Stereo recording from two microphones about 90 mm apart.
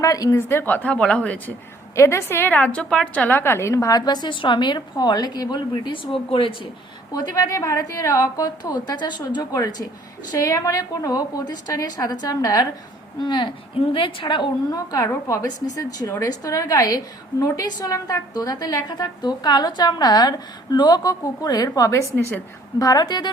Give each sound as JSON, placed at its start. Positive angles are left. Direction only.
{"t": 0.0, "sound": "a woman's voice", "side_deg": 40}
{"t": 0.3, "sound": "a woman's voice", "side_deg": 25}
{"t": 2.0, "sound": "a woman's voice", "side_deg": 30}
{"t": 2.6, "sound": "a woman's voice", "side_deg": 15}
{"t": 7.1, "sound": "a woman's voice", "side_deg": 45}
{"t": 10.3, "sound": "a woman's voice", "side_deg": 35}
{"t": 13.2, "sound": "a woman's voice", "side_deg": 60}